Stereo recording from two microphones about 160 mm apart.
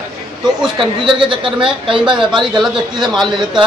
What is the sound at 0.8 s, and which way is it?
Speech, 30° right (ahead or behind).